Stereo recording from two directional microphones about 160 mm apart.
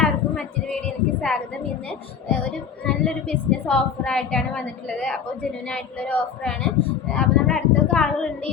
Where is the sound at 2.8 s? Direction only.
5° left (ahead or behind).